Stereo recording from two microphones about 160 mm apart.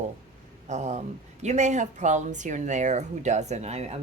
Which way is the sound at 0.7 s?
45° right (ahead or behind).